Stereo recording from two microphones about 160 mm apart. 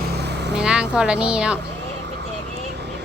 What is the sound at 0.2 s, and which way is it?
Vehicle, 90° right.